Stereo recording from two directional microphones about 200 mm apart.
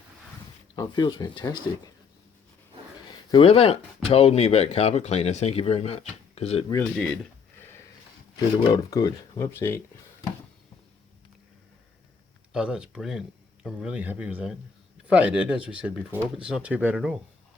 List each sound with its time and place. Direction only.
0.8 s speech: 20° left (ahead or behind)
3.3 s speech: 30° left (ahead or behind)
6.7 s speech: 10° left (ahead or behind)
8.6 s speech: 20° left (ahead or behind)
12.5 s speech: 5° right (ahead or behind)